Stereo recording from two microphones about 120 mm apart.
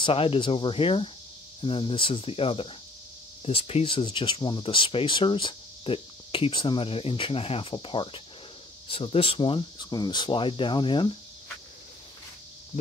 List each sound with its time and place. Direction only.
0.0 s speech: 50° left (ahead or behind)